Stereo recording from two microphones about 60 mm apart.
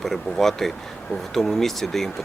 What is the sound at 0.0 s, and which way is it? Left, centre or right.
Speech, centre.